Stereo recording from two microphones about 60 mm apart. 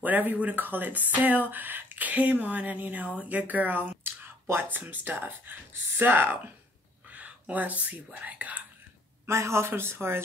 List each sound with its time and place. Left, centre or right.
0.0 s speech: right
7.1 s speech: right
9.3 s speech: right